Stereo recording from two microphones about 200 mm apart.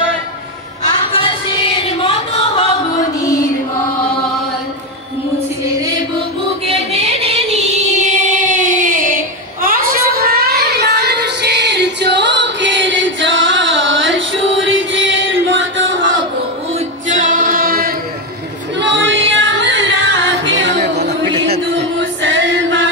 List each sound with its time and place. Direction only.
1.1 s music: 25° left (ahead or behind)
6.9 s child singing: 30° right (ahead or behind); by 16.1 s 70° right (ahead or behind)
17.1 s choir: 40° right (ahead or behind)
18.8 s music: 65° right (ahead or behind)
22.2 s a sound: 65° right (ahead or behind)